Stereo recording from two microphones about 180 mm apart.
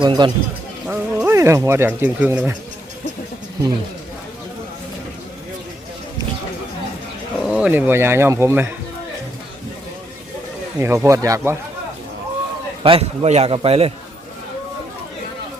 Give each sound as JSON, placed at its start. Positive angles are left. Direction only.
{"t": 0.0, "sound": "speech", "side_deg": -25}
{"t": 0.9, "sound": "speech", "side_deg": -15}
{"t": 7.3, "sound": "speech", "side_deg": -5}
{"t": 10.8, "sound": "speech", "side_deg": -15}
{"t": 12.8, "sound": "a man's voice", "side_deg": -35}